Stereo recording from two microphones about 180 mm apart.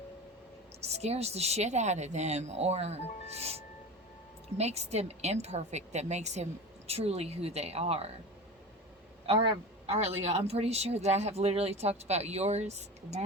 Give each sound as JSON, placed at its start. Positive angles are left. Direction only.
{"t": 0.8, "sound": "a man's voice", "side_deg": -35}
{"t": 9.2, "sound": "a man's voice", "side_deg": -30}